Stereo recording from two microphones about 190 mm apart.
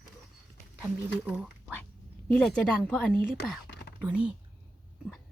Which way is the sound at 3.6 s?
60° left (ahead or behind).